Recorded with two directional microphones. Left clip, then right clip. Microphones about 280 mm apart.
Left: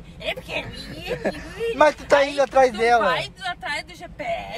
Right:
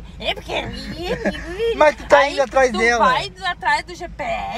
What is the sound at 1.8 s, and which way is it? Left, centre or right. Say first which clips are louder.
Speech: right 3 dB; centre.